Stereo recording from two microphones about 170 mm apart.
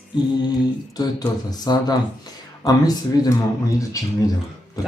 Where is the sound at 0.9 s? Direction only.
25° left (ahead or behind).